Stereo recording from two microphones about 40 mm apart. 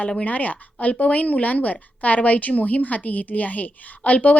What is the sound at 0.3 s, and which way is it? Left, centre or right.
A woman's voice, left.